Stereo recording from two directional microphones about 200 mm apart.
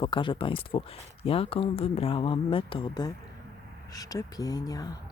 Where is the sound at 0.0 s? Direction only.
25° left (ahead or behind).